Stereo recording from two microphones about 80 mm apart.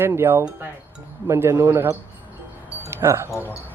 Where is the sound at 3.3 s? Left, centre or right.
Left.